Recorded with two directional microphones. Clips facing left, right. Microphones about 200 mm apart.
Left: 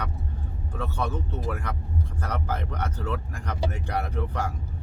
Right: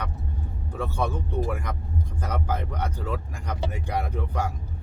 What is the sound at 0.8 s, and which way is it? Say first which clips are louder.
Speech: right 2 dB; 10° right (ahead or behind).